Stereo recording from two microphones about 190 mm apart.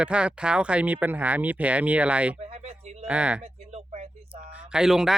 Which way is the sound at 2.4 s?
35° right (ahead or behind).